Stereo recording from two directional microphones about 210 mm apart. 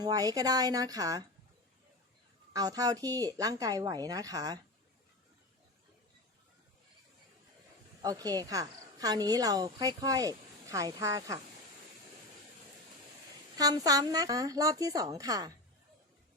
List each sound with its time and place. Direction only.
0.0 s a woman's voice: 15° right (ahead or behind)
2.5 s a woman's voice: 15° right (ahead or behind)
8.0 s a woman's voice: 15° right (ahead or behind)
13.6 s a woman's voice: 15° right (ahead or behind)